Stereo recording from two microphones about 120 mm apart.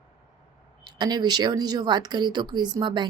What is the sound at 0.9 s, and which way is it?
A woman's voice, 35° right (ahead or behind).